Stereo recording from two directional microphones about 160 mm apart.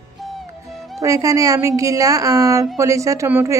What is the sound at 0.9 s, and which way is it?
Speech, 20° right (ahead or behind).